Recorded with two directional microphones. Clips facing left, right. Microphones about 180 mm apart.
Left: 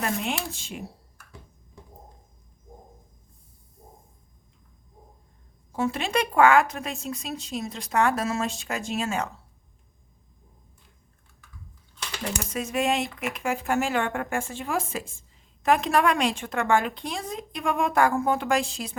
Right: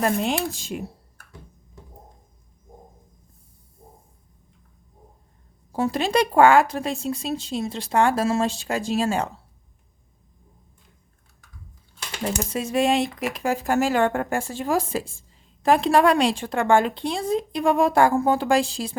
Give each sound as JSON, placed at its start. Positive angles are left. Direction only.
{"t": 0.0, "sound": "speech", "side_deg": -35}
{"t": 5.7, "sound": "speech", "side_deg": -35}
{"t": 12.2, "sound": "speech", "side_deg": -30}